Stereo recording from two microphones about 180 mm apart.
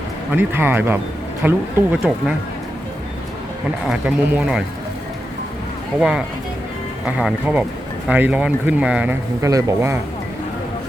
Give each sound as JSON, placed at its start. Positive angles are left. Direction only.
{"t": 0.3, "sound": "speech", "side_deg": -10}
{"t": 3.8, "sound": "speech", "side_deg": -5}
{"t": 6.0, "sound": "speech", "side_deg": -5}
{"t": 9.4, "sound": "speech", "side_deg": -20}